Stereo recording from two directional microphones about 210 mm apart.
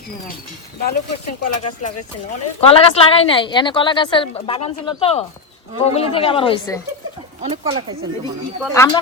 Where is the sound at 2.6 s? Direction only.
25° left (ahead or behind).